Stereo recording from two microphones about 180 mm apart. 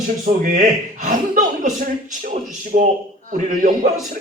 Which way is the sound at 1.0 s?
45° right (ahead or behind).